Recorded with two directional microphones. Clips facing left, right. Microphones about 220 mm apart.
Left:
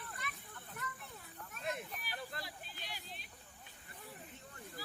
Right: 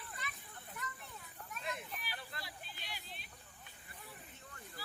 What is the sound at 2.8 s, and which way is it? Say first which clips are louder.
Music: left 2 dB; 45° left (ahead or behind).